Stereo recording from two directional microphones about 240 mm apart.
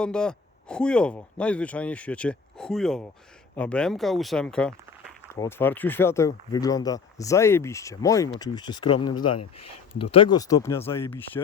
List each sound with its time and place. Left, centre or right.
0.0 s speech: centre
9.6 s a sound: left
10.0 s speech: left